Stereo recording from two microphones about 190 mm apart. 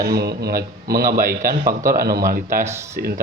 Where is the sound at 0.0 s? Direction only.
55° right (ahead or behind).